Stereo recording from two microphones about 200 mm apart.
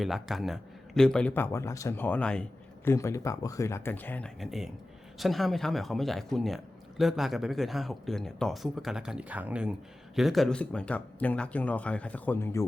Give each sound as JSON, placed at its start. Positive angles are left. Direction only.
{"t": 0.0, "sound": "a man's voice", "side_deg": 0}